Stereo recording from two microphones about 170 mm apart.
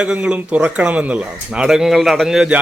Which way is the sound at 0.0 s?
5° right (ahead or behind).